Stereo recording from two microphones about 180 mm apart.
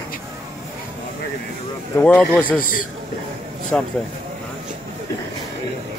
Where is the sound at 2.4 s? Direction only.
50° left (ahead or behind).